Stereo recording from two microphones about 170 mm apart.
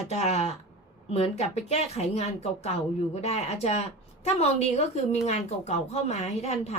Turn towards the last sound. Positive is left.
turn(degrees=40)  # may be behind; listen again after turning